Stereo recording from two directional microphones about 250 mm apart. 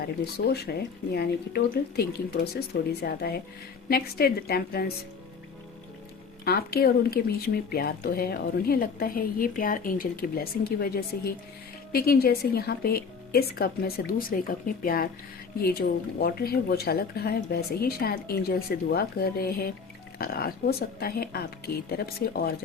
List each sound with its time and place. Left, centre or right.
0.0 s speech: left
6.4 s speech: left